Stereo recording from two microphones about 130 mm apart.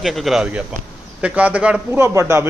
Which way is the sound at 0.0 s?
Centre (ahead or behind).